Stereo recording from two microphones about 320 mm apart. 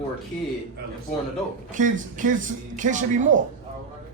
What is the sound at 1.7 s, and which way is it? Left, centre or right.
Speech, right.